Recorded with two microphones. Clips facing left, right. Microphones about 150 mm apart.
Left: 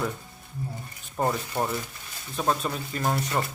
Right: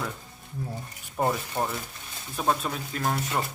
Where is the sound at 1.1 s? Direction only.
5° right (ahead or behind).